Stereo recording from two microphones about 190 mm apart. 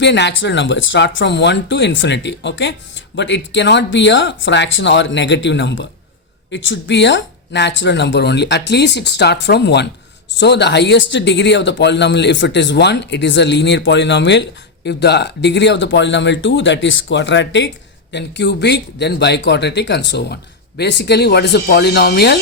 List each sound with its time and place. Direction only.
0.0 s speech: 65° left (ahead or behind)